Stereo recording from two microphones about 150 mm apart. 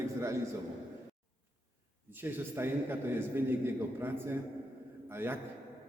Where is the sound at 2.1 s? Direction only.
15° right (ahead or behind).